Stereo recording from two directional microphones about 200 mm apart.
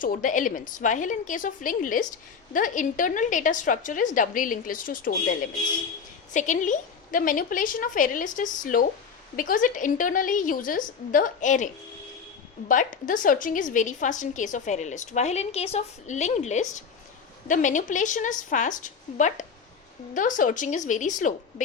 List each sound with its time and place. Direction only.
0.0 s a woman's voice: 40° left (ahead or behind)